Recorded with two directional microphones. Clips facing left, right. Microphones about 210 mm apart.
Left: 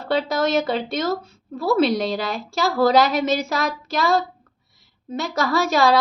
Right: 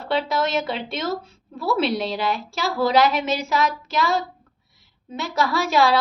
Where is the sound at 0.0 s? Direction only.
40° left (ahead or behind).